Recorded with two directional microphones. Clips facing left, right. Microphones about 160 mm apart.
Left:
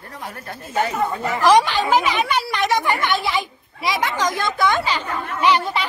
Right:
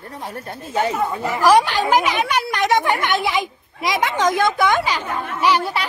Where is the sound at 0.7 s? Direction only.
15° right (ahead or behind).